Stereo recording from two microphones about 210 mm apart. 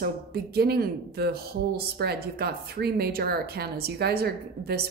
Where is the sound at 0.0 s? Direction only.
50° right (ahead or behind).